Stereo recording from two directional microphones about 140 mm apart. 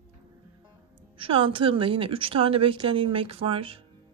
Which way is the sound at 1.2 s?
40° right (ahead or behind).